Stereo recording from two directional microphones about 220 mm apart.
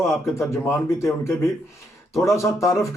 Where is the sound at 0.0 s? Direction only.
10° left (ahead or behind).